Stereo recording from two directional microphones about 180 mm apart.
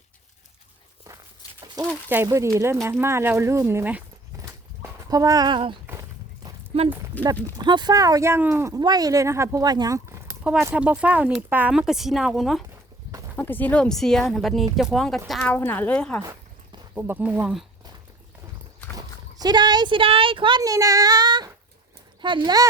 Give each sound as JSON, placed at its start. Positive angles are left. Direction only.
{"t": 1.6, "sound": "a sound", "side_deg": -20}
{"t": 2.0, "sound": "speech", "side_deg": -15}
{"t": 5.8, "sound": "horse", "side_deg": -15}
{"t": 7.4, "sound": "speech", "side_deg": -25}
{"t": 13.3, "sound": "speech", "side_deg": 10}
{"t": 16.2, "sound": "a sound", "side_deg": -20}
{"t": 16.9, "sound": "speech", "side_deg": -10}
{"t": 18.9, "sound": "speech", "side_deg": -20}